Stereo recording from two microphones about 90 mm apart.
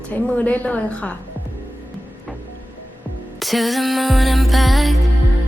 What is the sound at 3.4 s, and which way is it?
Music, centre (ahead or behind).